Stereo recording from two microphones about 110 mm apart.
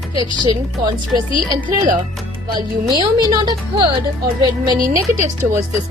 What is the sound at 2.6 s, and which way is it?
A woman's voice, 45° right (ahead or behind).